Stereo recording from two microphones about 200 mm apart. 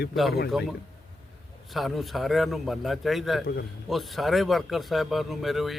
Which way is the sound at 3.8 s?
Centre (ahead or behind).